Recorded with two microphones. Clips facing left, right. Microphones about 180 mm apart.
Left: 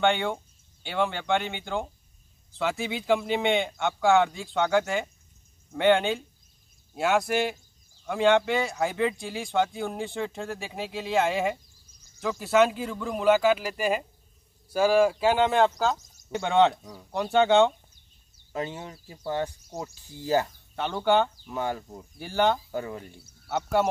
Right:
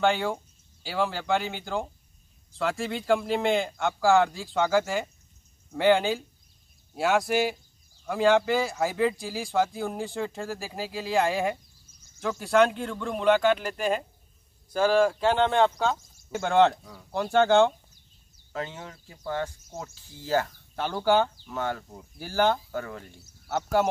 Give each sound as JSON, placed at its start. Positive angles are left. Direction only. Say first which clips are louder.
{"t": 0.0, "sound": "speech", "louder": "even", "side_deg": 0}
{"t": 18.5, "sound": "speech", "louder": "left 2 dB", "side_deg": 15}
{"t": 20.7, "sound": "speech", "louder": "even", "side_deg": 0}
{"t": 21.5, "sound": "speech", "louder": "left 1 dB", "side_deg": 15}
{"t": 21.9, "sound": "speech", "louder": "even", "side_deg": 0}
{"t": 22.7, "sound": "speech", "louder": "left 2 dB", "side_deg": 15}
{"t": 23.5, "sound": "speech", "louder": "even", "side_deg": 0}